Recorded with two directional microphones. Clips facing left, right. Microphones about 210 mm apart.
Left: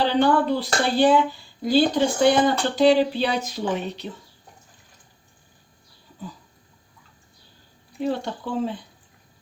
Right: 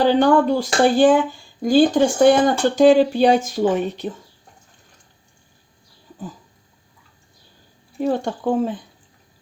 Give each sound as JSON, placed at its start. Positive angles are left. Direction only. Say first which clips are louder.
{"t": 0.0, "sound": "speech", "louder": "right 5 dB", "side_deg": -45}
{"t": 7.9, "sound": "speech", "louder": "right 4 dB", "side_deg": -50}